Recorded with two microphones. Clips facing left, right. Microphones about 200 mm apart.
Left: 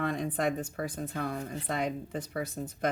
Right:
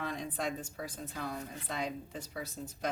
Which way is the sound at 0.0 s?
55° left (ahead or behind).